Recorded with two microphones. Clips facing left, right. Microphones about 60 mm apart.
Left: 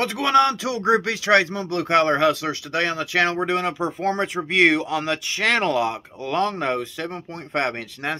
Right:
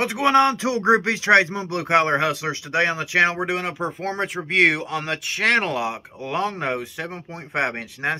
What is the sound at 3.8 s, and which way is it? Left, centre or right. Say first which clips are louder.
Speech: left 3 dB; centre.